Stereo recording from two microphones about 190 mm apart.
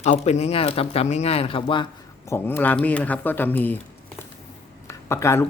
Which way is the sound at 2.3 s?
10° left (ahead or behind).